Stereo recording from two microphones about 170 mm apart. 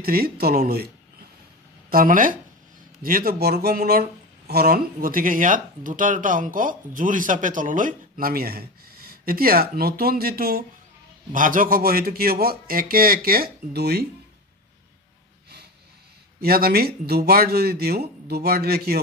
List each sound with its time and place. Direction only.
0.0 s speech: 65° right (ahead or behind)
1.9 s speech: 55° right (ahead or behind); by 14.0 s 70° right (ahead or behind)
16.3 s speech: 65° right (ahead or behind)